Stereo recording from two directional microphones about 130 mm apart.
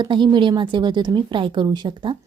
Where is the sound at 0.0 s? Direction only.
35° right (ahead or behind).